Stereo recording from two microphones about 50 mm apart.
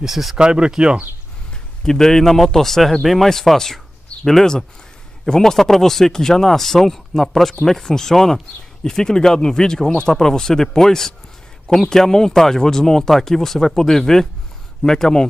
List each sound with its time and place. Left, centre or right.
0.0 s speech: centre
0.4 s speech: centre
1.8 s a man's voice: centre